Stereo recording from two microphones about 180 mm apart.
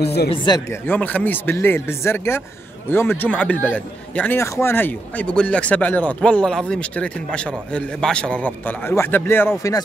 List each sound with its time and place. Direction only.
0.0 s speech: 65° left (ahead or behind)
0.7 s a man's voice: 10° left (ahead or behind)